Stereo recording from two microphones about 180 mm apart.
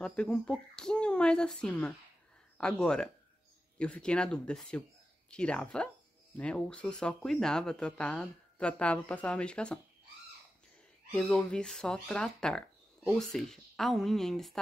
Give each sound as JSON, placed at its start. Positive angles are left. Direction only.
{"t": 0.0, "sound": "speech", "side_deg": 5}
{"t": 11.1, "sound": "speech", "side_deg": 5}